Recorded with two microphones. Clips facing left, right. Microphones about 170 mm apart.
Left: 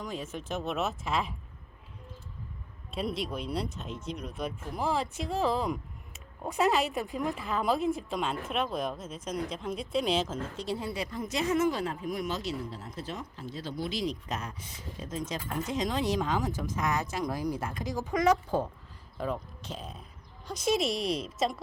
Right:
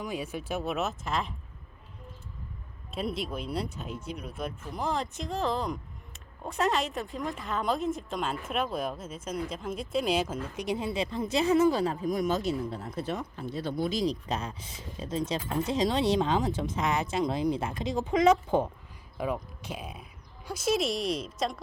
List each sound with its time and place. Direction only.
0.0 s speech: 10° right (ahead or behind)
2.9 s speech: centre (ahead or behind); by 14.0 s 55° right (ahead or behind)
14.0 s speech: 35° right (ahead or behind)
19.1 s speech: 10° right (ahead or behind)